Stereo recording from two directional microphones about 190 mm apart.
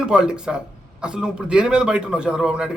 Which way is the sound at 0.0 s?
5° right (ahead or behind).